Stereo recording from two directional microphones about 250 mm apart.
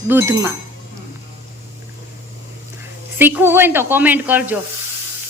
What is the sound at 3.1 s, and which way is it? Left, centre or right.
Speech, centre.